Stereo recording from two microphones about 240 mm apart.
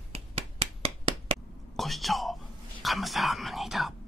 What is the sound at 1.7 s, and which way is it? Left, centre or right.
Whispering, centre.